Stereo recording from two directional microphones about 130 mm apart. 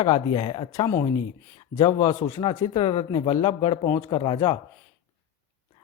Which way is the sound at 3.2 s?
35° left (ahead or behind).